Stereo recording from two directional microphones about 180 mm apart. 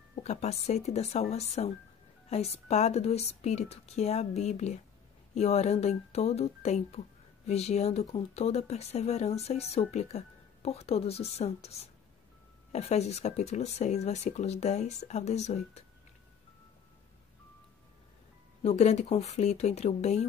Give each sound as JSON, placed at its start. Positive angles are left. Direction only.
{"t": 0.1, "sound": "speech", "side_deg": 35}
{"t": 18.6, "sound": "speech", "side_deg": 35}